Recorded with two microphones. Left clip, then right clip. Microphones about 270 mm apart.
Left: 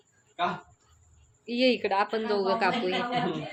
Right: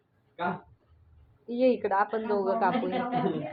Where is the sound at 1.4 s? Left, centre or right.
Centre.